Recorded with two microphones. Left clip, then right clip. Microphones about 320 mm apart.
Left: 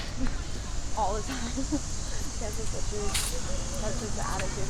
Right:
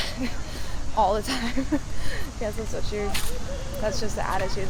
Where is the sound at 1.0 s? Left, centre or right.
Right.